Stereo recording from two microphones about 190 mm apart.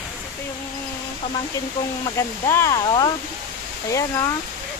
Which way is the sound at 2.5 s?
15° left (ahead or behind).